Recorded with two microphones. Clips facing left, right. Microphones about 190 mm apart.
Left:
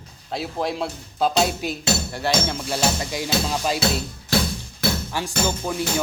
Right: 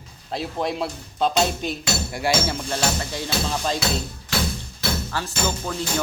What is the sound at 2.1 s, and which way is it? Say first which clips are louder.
Speech: even; 10° right (ahead or behind).